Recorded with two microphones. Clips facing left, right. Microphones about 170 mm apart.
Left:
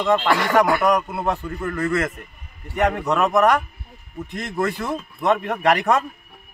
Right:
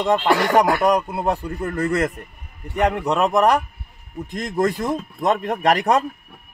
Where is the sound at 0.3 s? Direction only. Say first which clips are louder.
Right 3 dB; 35° right (ahead or behind).